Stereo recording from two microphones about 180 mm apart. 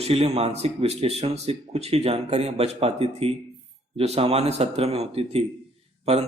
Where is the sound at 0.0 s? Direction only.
35° right (ahead or behind).